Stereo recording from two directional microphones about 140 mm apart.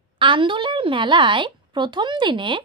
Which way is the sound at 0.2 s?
35° right (ahead or behind).